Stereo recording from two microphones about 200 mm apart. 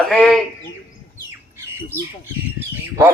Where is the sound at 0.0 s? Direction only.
5° left (ahead or behind).